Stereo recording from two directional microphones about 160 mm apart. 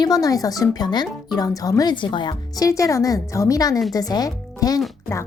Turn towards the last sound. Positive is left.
turn(degrees=25)  # may be behind; listen again after turning